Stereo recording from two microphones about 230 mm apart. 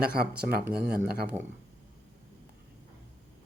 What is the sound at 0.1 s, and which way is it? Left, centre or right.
Speech, right.